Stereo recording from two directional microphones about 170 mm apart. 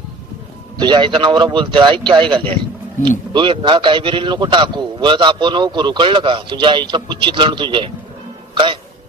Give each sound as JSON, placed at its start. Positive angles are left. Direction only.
{"t": 0.7, "sound": "a man's voice", "side_deg": -25}